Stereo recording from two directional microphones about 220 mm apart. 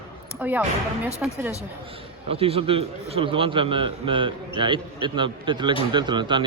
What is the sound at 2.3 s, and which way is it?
A man's voice, 25° right (ahead or behind).